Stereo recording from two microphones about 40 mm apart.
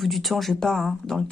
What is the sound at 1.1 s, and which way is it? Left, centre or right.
Speech, centre.